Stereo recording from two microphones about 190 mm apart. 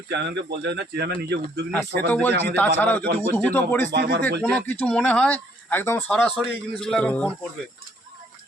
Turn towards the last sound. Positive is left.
turn(degrees=5)  # may be behind; listen again after turning